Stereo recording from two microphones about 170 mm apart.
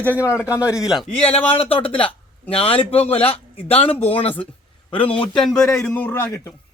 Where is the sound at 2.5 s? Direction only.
35° left (ahead or behind).